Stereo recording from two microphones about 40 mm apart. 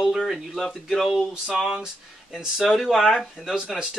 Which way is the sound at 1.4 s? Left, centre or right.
Centre.